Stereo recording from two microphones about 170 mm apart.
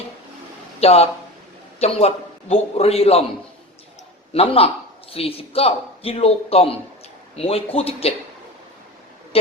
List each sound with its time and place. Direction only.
0.8 s a man's voice: 35° left (ahead or behind)
4.3 s a man's voice: 35° left (ahead or behind)
9.3 s speech: 35° left (ahead or behind)